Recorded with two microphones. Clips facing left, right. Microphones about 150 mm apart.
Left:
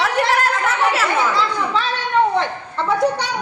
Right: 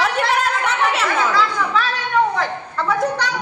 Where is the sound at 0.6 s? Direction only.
Centre (ahead or behind).